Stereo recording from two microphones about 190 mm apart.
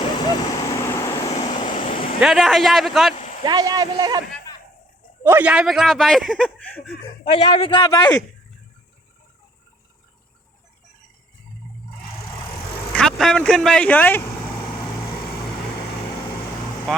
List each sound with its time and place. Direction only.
0.1 s vehicle: 20° left (ahead or behind)
1.2 s vehicle: 30° left (ahead or behind)
1.9 s vehicle: 45° left (ahead or behind)
2.2 s speech: centre (ahead or behind)
3.4 s speech: 20° right (ahead or behind)
5.2 s speech: 10° right (ahead or behind); by 6.9 s 5° left (ahead or behind)
7.6 s speech: 25° left (ahead or behind)
12.9 s speech: 5° left (ahead or behind)